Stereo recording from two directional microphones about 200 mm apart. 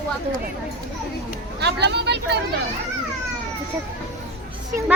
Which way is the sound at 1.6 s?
55° right (ahead or behind).